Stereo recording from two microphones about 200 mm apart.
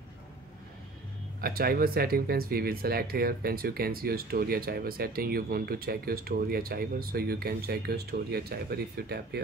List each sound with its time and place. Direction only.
1.4 s speech: 50° right (ahead or behind)